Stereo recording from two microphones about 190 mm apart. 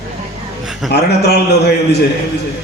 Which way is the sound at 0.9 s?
60° left (ahead or behind).